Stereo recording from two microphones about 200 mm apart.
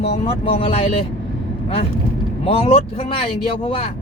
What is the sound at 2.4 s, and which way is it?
Speech, 25° left (ahead or behind).